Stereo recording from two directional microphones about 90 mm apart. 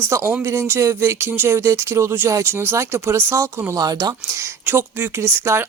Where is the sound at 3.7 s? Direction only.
45° right (ahead or behind).